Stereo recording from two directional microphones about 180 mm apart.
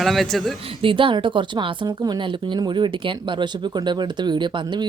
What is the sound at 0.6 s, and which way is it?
A woman's voice, 30° right (ahead or behind).